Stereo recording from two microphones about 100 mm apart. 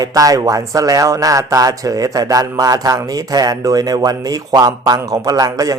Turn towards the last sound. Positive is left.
turn(degrees=-35)  # may be behind; listen again after turning